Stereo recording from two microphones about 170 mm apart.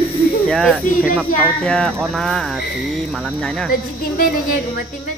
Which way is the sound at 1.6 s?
5° left (ahead or behind).